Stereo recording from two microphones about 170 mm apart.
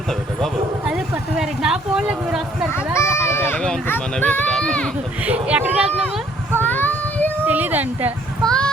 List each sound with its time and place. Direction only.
0.1 s speech: centre (ahead or behind)
2.7 s run: 15° left (ahead or behind)
3.2 s speech: 15° left (ahead or behind)
5.2 s speech: 10° right (ahead or behind)
6.6 s child singing: 10° left (ahead or behind)
7.4 s speech: 10° right (ahead or behind)
8.4 s a child's voice: 5° left (ahead or behind)